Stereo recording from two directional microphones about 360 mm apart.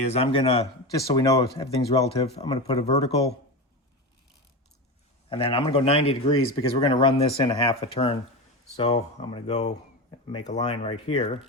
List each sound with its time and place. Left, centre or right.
0.1 s speech: centre
5.3 s speech: centre